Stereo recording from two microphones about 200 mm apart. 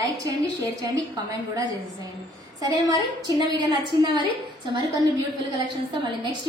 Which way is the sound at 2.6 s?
20° right (ahead or behind).